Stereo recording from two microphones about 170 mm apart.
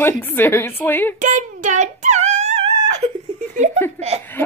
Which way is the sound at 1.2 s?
45° right (ahead or behind).